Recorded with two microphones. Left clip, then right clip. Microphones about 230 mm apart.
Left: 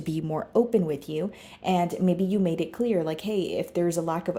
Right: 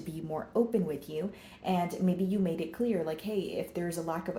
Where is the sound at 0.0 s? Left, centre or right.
Left.